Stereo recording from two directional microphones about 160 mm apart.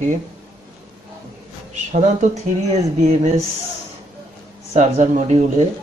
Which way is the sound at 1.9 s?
45° right (ahead or behind).